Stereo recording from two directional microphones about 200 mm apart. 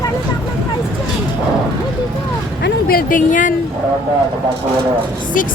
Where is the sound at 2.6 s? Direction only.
50° left (ahead or behind).